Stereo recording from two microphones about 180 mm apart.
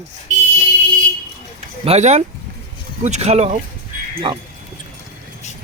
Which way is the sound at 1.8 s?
35° right (ahead or behind).